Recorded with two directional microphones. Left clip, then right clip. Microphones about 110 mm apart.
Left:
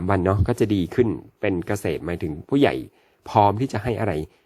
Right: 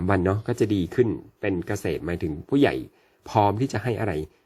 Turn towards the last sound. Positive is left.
turn(degrees=30)  # may be behind; listen again after turning